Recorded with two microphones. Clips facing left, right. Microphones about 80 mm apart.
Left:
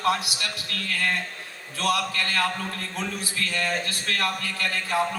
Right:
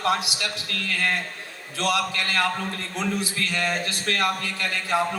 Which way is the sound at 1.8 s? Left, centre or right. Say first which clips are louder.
Even; right.